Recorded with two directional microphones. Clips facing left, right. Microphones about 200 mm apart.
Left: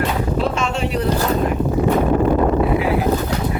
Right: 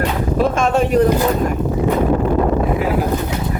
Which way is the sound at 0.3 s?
50° right (ahead or behind).